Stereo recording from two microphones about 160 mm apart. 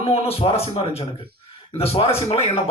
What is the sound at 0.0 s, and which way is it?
Speech, 40° left (ahead or behind).